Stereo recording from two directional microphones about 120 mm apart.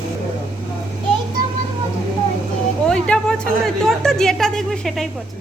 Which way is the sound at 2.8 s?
10° left (ahead or behind).